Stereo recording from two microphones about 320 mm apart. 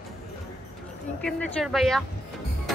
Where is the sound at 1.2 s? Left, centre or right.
Centre.